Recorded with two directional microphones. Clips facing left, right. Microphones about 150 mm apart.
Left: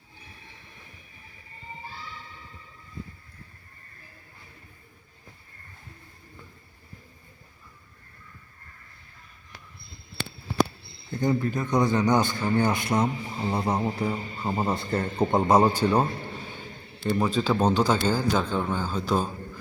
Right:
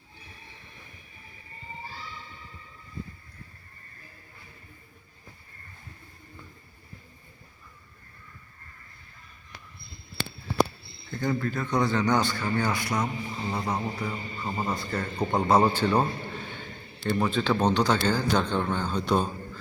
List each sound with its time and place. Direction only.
11.1 s a man's voice: 20° left (ahead or behind)
15.4 s speech: 15° left (ahead or behind)